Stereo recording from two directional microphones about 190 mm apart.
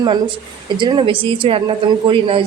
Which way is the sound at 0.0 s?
25° right (ahead or behind).